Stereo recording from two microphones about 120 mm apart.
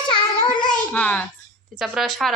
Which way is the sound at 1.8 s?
5° right (ahead or behind).